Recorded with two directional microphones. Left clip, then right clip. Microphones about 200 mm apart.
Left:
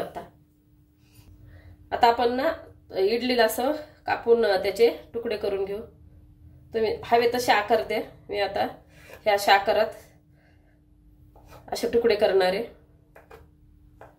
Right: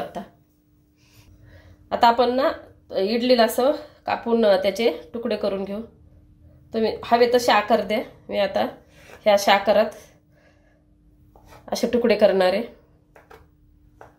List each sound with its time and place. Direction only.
1.9 s a woman's voice: 35° right (ahead or behind)
11.7 s a woman's voice: 40° right (ahead or behind)